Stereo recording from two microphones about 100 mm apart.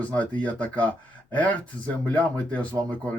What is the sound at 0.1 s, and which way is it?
Speech, 15° left (ahead or behind).